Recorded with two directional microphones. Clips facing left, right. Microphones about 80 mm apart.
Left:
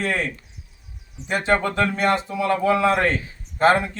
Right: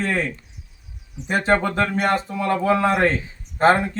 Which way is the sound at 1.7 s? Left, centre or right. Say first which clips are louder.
Even; right.